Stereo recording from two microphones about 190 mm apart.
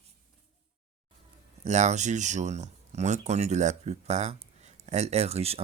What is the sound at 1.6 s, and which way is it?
Speech, 35° right (ahead or behind).